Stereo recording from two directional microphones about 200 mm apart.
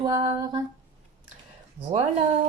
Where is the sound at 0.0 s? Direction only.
15° right (ahead or behind).